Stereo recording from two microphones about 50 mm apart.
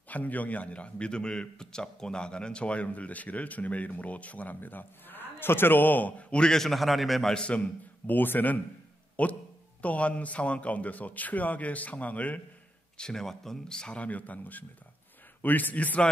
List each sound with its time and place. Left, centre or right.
0.1 s a man's voice: left
6.4 s a man's voice: centre
7.3 s a man's voice: left
8.1 s a man's voice: left
12.9 s speech: centre
14.0 s speech: left